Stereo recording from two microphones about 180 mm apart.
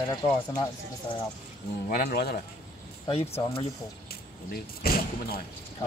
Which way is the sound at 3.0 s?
35° left (ahead or behind).